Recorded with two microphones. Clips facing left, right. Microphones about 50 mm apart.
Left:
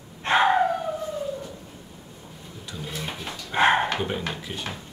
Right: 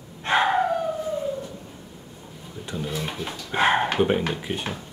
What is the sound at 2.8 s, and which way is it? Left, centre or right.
Drawer open or close, centre.